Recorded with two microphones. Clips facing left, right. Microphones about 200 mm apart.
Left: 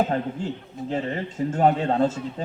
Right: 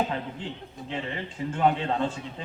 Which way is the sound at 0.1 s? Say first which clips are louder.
Left 7 dB; 45° left (ahead or behind).